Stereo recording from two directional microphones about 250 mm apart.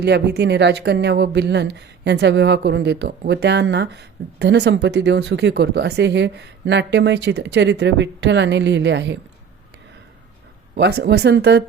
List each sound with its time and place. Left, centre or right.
0.0 s speech: right
10.8 s speech: right